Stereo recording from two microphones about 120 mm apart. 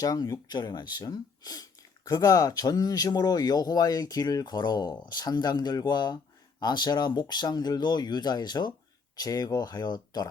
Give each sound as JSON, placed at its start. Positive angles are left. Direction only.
{"t": 0.0, "sound": "speech", "side_deg": 30}